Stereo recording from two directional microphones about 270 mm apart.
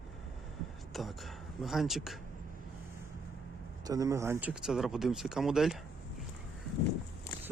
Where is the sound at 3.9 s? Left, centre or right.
Centre.